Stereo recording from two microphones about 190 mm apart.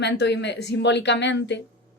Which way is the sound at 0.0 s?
65° left (ahead or behind).